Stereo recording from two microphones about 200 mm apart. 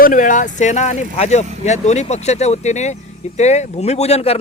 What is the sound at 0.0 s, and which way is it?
Speech, 40° left (ahead or behind).